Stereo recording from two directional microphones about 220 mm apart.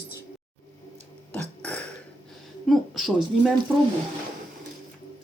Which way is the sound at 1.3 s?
5° left (ahead or behind).